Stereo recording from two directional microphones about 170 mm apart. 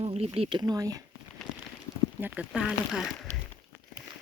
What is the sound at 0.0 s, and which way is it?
Speech, 35° right (ahead or behind).